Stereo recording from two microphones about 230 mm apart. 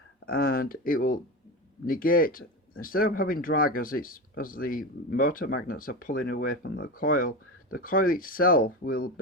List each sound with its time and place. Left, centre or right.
0.3 s speech: left